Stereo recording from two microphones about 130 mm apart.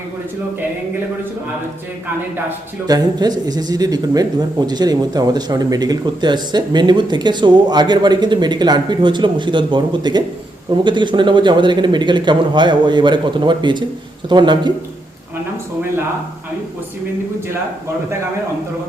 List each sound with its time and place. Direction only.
2.8 s speech: 30° right (ahead or behind)